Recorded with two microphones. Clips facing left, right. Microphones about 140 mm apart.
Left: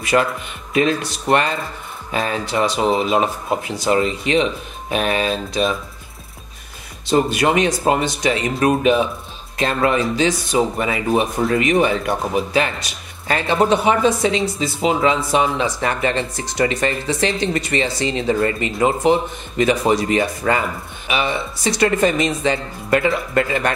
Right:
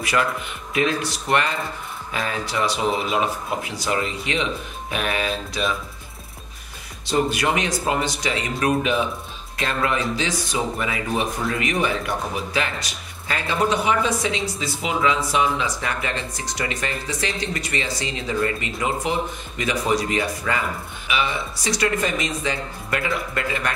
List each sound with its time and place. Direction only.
0.1 s speech: 35° left (ahead or behind)
7.1 s speech: 30° left (ahead or behind)